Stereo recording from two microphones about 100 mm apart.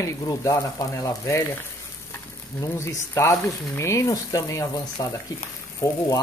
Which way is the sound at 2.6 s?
30° left (ahead or behind).